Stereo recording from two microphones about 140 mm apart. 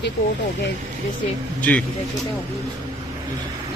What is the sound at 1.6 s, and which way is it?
Speech, 10° left (ahead or behind).